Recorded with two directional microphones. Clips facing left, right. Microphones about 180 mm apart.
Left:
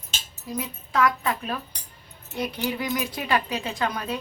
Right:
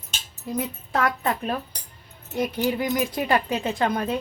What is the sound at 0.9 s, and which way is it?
A woman's voice, 45° right (ahead or behind).